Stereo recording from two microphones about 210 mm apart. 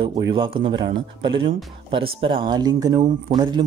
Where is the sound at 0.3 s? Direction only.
25° right (ahead or behind).